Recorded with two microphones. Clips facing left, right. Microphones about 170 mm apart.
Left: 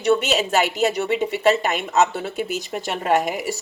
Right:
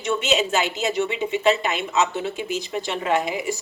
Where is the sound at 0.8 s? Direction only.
50° left (ahead or behind).